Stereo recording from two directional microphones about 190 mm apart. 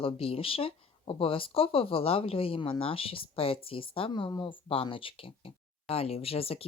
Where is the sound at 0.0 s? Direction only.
30° left (ahead or behind).